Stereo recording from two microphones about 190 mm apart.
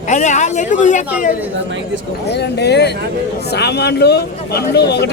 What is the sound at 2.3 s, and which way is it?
A man's voice, 60° left (ahead or behind).